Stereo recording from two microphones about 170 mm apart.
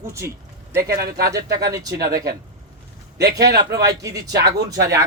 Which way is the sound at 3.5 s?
75° right (ahead or behind).